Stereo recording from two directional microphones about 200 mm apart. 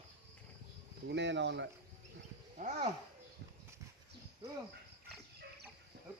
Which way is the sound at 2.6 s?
35° right (ahead or behind).